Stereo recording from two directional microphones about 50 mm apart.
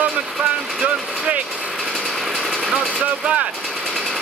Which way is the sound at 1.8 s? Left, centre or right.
Centre.